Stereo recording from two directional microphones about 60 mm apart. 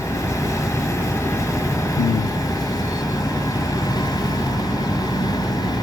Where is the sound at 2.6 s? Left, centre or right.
Left.